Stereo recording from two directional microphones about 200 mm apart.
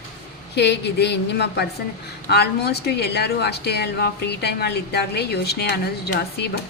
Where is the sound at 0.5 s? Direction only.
55° left (ahead or behind).